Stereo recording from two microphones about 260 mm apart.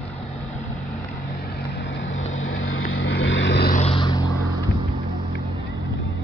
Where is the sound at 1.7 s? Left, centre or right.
Left.